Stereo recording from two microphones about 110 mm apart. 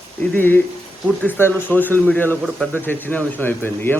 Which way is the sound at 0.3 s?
20° left (ahead or behind).